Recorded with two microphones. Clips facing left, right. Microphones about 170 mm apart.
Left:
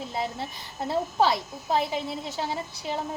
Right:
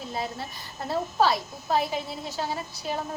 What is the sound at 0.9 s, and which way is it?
A woman's voice, 20° left (ahead or behind).